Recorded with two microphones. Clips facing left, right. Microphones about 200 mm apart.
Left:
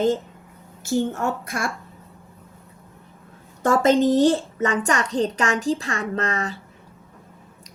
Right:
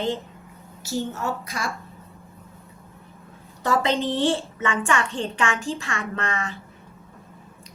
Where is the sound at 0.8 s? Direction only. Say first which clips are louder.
Left 5 dB; 50° left (ahead or behind).